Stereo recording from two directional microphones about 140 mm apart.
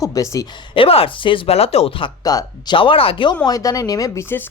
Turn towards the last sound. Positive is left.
turn(degrees=20)  # may be behind; listen again after turning